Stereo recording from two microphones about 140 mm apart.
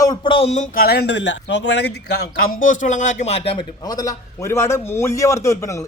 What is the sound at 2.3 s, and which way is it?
Speech, 90° left.